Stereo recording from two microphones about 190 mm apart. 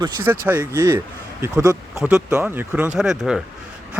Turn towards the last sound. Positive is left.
turn(degrees=-5)  # may be behind; listen again after turning